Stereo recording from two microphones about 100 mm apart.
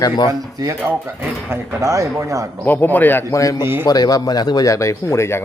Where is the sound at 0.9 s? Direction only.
20° right (ahead or behind).